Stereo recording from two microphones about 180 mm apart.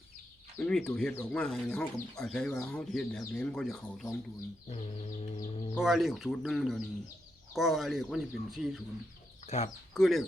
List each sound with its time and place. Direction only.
0.6 s speech: 5° left (ahead or behind)
4.7 s a sound: 40° left (ahead or behind)
5.8 s speech: centre (ahead or behind)
9.5 s speech: 40° left (ahead or behind)
9.9 s speech: centre (ahead or behind)